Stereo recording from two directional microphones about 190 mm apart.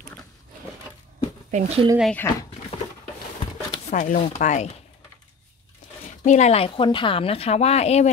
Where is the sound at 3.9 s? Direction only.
40° left (ahead or behind).